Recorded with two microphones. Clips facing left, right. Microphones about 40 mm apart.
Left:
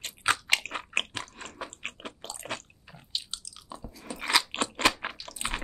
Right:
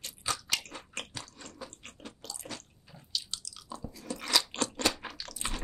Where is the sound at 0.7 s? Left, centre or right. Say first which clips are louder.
Left 10 dB; left.